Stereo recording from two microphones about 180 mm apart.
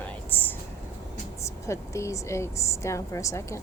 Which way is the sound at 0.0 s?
10° left (ahead or behind).